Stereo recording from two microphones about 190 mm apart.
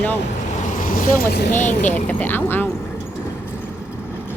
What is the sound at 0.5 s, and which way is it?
Boat, 45° left (ahead or behind).